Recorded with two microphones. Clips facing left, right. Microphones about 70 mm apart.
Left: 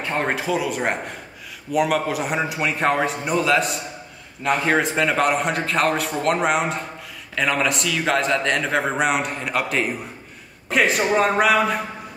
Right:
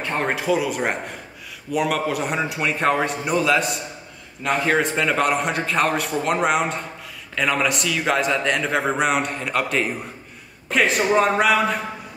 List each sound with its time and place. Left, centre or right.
0.0 s a man's voice: centre